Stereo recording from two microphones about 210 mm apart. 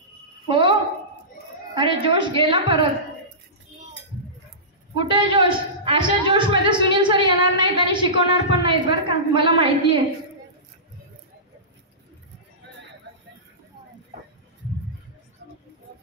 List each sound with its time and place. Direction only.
0.5 s a sound: 25° right (ahead or behind)
1.8 s a woman's voice: 25° right (ahead or behind)
4.9 s a woman's voice: 25° right (ahead or behind)